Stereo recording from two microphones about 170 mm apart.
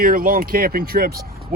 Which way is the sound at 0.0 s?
55° right (ahead or behind).